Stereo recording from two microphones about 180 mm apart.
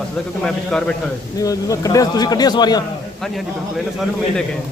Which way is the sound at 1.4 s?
20° left (ahead or behind).